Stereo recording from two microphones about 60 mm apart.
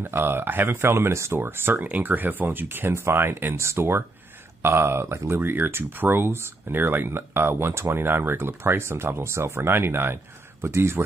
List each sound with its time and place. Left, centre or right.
0.0 s speech: right